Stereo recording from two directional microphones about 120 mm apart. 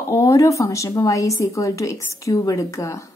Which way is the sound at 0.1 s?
25° left (ahead or behind).